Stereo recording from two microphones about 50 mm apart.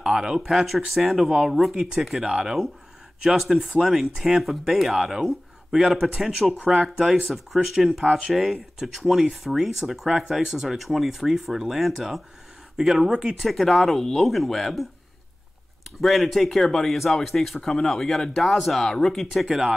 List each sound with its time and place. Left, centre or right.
0.0 s speech: centre
3.3 s speech: centre
9.0 s speech: centre
16.0 s speech: centre
19.4 s speech: centre